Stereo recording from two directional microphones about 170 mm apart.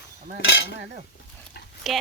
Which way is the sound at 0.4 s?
90° left.